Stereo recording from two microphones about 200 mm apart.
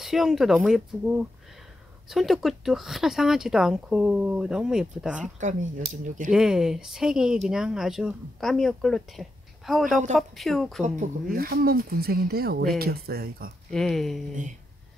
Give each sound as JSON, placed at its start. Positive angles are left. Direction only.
{"t": 0.0, "sound": "speech", "side_deg": 0}
{"t": 5.4, "sound": "speech", "side_deg": -35}
{"t": 6.3, "sound": "speech", "side_deg": -5}
{"t": 11.3, "sound": "speech", "side_deg": -45}
{"t": 13.7, "sound": "speech", "side_deg": 0}